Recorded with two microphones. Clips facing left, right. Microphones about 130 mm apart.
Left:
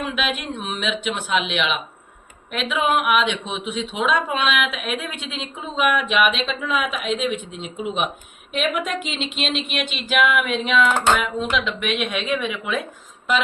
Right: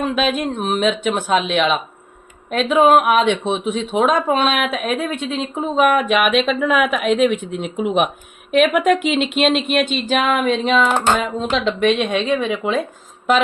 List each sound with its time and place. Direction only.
0.0 s a woman's voice: 40° right (ahead or behind)